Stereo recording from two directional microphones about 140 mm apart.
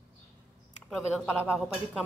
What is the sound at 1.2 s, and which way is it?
Speech, 10° right (ahead or behind).